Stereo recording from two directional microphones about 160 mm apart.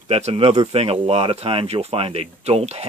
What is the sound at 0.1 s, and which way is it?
Speech, 40° right (ahead or behind).